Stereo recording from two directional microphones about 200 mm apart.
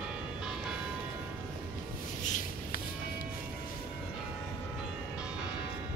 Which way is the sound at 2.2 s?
40° left (ahead or behind).